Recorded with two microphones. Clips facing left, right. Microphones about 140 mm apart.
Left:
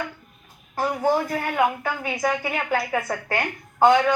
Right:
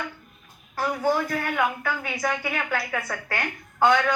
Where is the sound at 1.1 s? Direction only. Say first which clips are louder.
Left 2 dB; 30° left (ahead or behind).